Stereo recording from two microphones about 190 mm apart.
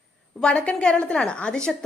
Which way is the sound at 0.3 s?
5° left (ahead or behind).